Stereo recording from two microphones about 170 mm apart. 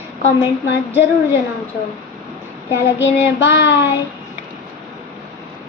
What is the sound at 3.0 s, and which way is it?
Child singing, 90° left.